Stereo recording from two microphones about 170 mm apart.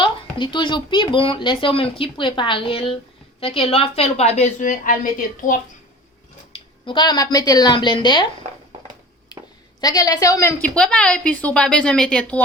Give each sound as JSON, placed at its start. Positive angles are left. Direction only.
{"t": 0.0, "sound": "a woman's voice", "side_deg": 30}
{"t": 6.5, "sound": "speech", "side_deg": 30}
{"t": 9.8, "sound": "speech", "side_deg": 20}
{"t": 10.6, "sound": "a woman's voice", "side_deg": 5}